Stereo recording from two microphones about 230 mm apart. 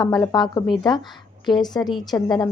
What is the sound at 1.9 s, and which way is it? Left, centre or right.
Speech, centre.